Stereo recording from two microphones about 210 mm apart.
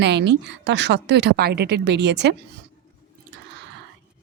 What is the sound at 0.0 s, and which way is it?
A woman's voice, 55° right (ahead or behind).